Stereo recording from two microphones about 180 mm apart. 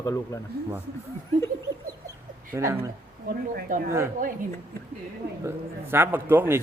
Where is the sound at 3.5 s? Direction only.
50° right (ahead or behind).